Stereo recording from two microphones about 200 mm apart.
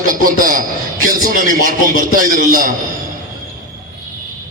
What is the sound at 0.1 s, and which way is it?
Speech, 45° right (ahead or behind).